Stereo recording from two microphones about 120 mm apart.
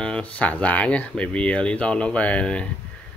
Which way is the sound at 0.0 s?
10° left (ahead or behind).